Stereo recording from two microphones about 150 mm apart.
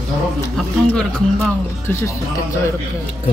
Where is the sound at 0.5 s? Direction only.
10° left (ahead or behind).